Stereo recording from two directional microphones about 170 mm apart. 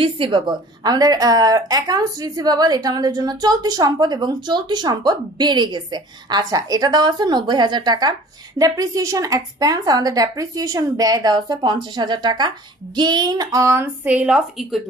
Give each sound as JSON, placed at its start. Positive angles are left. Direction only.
{"t": 0.0, "sound": "a woman's voice", "side_deg": -30}